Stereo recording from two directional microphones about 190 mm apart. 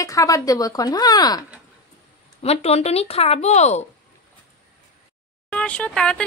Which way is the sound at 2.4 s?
35° left (ahead or behind).